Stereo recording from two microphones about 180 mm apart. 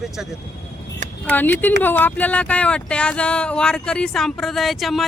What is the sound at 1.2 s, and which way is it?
Speech, 10° left (ahead or behind).